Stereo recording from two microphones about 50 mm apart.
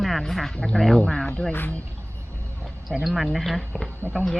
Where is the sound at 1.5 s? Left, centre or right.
Left.